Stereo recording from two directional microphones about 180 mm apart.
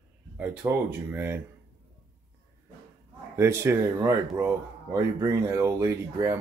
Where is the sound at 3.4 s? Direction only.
15° right (ahead or behind).